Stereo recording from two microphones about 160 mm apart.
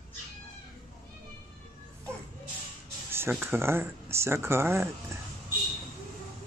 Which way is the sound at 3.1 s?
15° right (ahead or behind).